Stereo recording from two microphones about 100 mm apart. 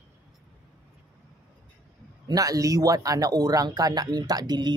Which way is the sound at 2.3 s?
35° right (ahead or behind).